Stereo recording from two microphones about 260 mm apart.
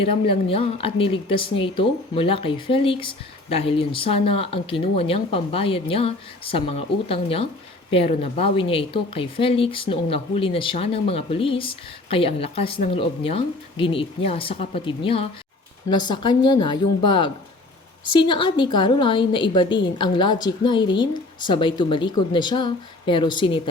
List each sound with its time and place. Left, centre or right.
0.1 s speech: left